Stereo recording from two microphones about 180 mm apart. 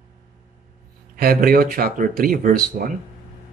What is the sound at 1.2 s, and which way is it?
Speech, 55° right (ahead or behind).